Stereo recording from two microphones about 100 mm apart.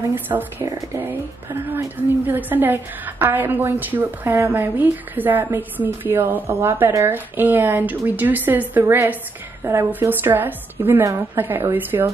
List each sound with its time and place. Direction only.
0.1 s a woman's voice: 20° right (ahead or behind)
0.7 s a woman's voice: 30° right (ahead or behind)